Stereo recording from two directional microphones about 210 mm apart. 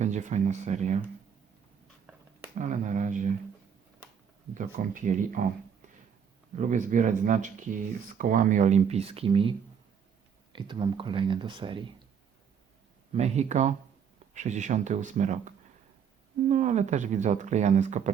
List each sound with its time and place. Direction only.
0.0 s speech: 35° right (ahead or behind)
2.6 s speech: 35° right (ahead or behind)
4.5 s speech: 40° right (ahead or behind)
6.6 s speech: 35° right (ahead or behind)
13.1 s speech: 30° right (ahead or behind)